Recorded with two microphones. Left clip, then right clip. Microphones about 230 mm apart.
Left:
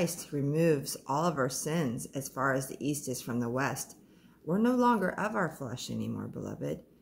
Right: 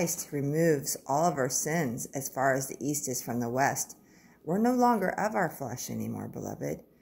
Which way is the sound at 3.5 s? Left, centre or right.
Centre.